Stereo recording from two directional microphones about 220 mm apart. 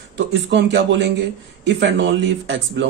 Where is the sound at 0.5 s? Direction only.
50° right (ahead or behind).